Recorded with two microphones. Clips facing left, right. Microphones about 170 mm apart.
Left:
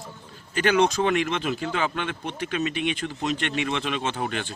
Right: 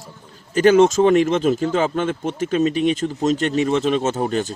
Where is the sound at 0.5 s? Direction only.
45° right (ahead or behind).